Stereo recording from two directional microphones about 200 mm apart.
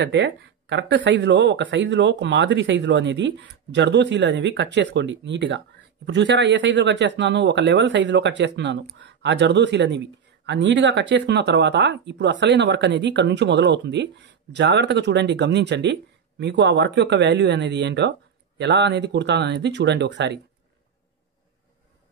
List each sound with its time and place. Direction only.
0.0 s speech: 60° right (ahead or behind)